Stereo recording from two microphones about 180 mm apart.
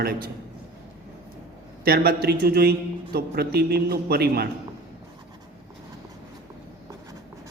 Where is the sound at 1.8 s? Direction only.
55° right (ahead or behind).